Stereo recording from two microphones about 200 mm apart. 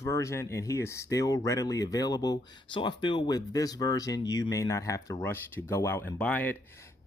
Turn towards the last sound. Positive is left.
turn(degrees=10)  # may be behind; listen again after turning